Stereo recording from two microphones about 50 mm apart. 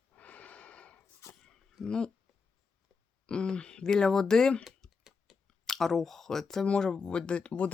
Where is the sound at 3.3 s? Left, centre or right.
Centre.